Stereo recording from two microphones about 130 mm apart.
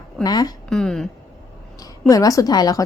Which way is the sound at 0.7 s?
5° left (ahead or behind).